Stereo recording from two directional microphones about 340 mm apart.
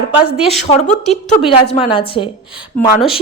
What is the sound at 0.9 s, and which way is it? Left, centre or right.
A woman's voice, left.